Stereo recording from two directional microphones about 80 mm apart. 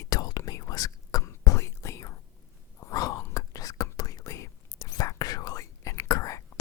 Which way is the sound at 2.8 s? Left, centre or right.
Left.